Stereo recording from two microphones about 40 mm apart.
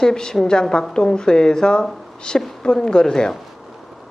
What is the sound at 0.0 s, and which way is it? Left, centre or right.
Speech, centre.